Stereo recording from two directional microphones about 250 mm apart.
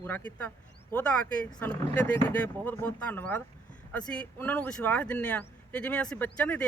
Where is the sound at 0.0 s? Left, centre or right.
Centre.